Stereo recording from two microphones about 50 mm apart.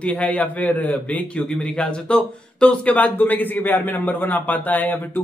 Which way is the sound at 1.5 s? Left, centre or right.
Centre.